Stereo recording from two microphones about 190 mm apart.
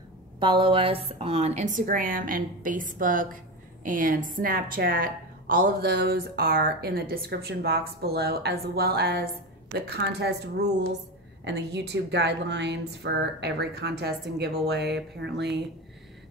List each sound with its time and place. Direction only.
0.4 s a woman's voice: 25° right (ahead or behind); by 15.6 s 65° right (ahead or behind)